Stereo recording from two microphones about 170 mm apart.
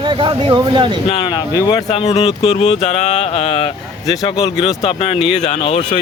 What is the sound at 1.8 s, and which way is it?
Speech, 40° left (ahead or behind).